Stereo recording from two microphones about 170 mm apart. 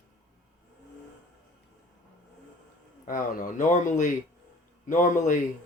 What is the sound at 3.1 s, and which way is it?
Speech, 55° left (ahead or behind).